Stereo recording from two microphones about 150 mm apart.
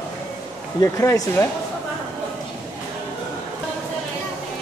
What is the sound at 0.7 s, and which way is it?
Speech, 20° left (ahead or behind).